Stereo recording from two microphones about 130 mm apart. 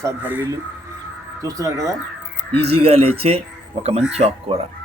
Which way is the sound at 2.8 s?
50° right (ahead or behind).